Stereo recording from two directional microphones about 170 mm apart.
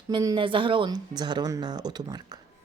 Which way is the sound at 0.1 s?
25° right (ahead or behind).